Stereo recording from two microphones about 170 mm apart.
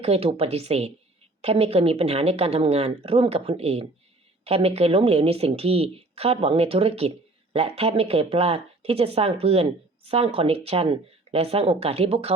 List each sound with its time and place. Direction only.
0.0 s speech: 35° right (ahead or behind)